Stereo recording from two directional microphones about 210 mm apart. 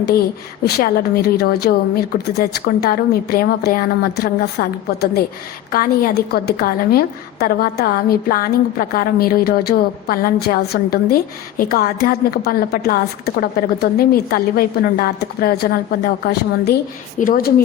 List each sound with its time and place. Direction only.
0.6 s a woman's voice: 45° left (ahead or behind)